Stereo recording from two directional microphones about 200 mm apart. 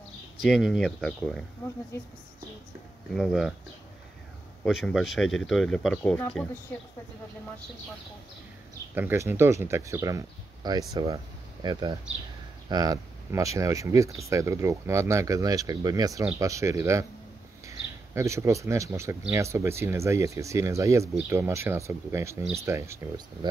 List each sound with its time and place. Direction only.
0.4 s speech: centre (ahead or behind)
3.2 s speech: centre (ahead or behind)
4.6 s speech: centre (ahead or behind)
8.9 s speech: 10° right (ahead or behind)